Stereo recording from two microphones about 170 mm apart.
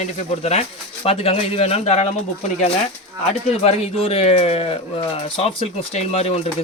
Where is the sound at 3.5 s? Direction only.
40° left (ahead or behind).